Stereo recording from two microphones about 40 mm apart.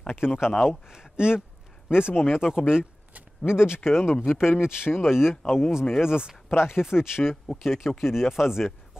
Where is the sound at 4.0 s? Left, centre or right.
Left.